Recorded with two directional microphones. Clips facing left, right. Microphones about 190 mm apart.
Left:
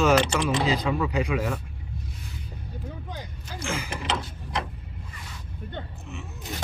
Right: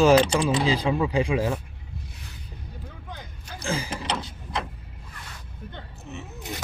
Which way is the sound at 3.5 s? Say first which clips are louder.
Right 2 dB; 35° right (ahead or behind).